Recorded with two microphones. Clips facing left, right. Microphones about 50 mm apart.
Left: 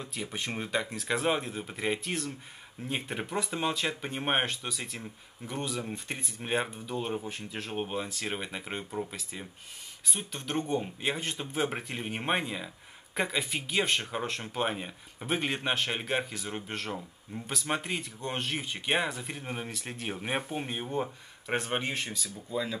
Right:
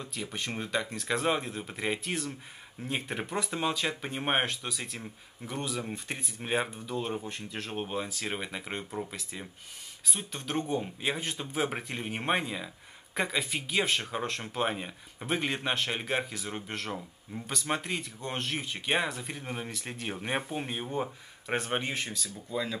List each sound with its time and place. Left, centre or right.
0.0 s speech: centre